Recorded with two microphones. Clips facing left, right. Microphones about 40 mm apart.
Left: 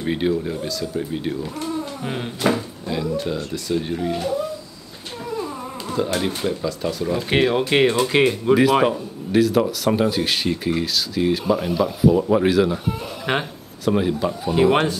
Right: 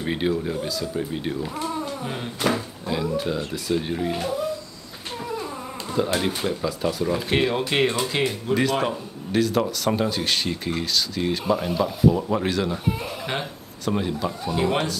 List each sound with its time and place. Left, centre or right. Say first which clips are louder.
0.0 s speech: left 3 dB; centre
2.0 s speech: left 4 dB; centre
2.5 s speech: left 2 dB; centre
5.3 s a sound: left 5 dB; centre
6.1 s speech: left 1 dB; centre
7.2 s speech: left 6 dB; centre
8.1 s speech: left 7 dB; left
9.3 s speech: left 4 dB; centre